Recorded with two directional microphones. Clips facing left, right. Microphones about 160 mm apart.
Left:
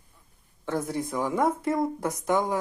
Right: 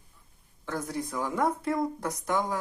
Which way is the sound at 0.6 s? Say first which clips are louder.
Left 4 dB; 25° left (ahead or behind).